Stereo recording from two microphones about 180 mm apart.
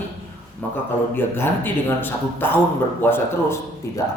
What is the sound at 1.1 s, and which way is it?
A man's voice, 10° left (ahead or behind).